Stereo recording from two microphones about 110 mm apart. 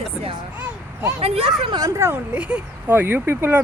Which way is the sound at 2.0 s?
20° right (ahead or behind).